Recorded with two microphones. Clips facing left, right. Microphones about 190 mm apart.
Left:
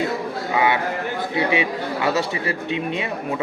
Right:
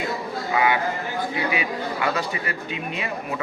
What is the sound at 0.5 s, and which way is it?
Speech, 25° left (ahead or behind).